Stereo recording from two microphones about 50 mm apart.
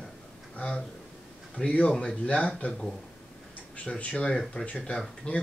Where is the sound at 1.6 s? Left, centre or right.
Left.